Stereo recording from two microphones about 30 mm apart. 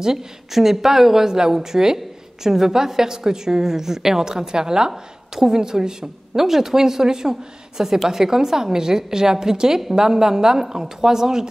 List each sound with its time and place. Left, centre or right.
0.5 s a woman's voice: centre